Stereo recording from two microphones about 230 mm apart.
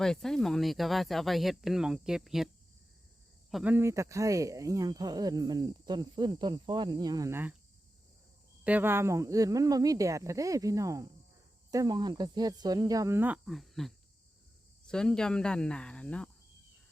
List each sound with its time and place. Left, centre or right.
0.0 s speech: centre
3.5 s speech: centre
8.6 s speech: centre